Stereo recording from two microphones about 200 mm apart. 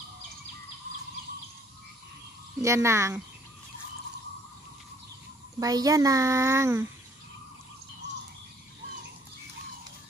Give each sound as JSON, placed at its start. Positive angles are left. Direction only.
{"t": 2.6, "sound": "a child's voice", "side_deg": -15}
{"t": 5.6, "sound": "a child's voice", "side_deg": -15}